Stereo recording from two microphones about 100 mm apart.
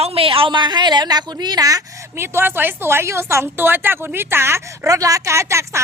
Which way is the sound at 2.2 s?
25° right (ahead or behind).